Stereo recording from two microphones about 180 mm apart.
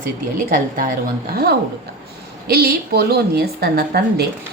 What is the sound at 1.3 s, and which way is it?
Speech, 60° right (ahead or behind).